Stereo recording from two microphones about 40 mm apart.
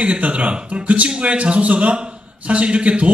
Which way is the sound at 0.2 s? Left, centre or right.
Right.